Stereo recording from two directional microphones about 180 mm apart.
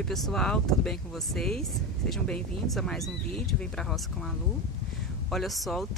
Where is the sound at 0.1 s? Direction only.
Centre (ahead or behind).